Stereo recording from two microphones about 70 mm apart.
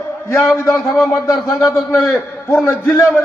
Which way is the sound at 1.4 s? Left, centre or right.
Left.